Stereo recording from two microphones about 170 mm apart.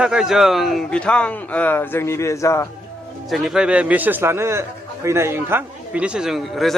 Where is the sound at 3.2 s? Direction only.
Centre (ahead or behind).